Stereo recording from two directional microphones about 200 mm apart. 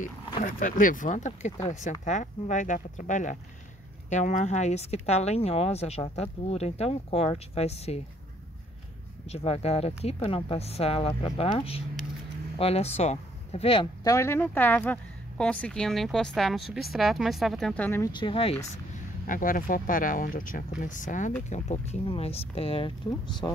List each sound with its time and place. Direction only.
0.4 s speech: 40° left (ahead or behind)
9.3 s speech: 30° left (ahead or behind)
14.0 s speech: 15° left (ahead or behind)
18.2 s speech: 30° left (ahead or behind)
19.2 s speech: 45° left (ahead or behind); by 22.9 s 30° left (ahead or behind)
23.4 s speech: 15° left (ahead or behind)